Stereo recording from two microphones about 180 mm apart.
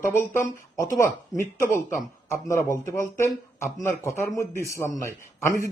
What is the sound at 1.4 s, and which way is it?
Speech, 15° left (ahead or behind).